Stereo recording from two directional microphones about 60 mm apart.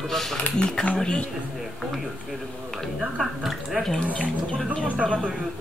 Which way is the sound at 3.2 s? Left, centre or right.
Centre.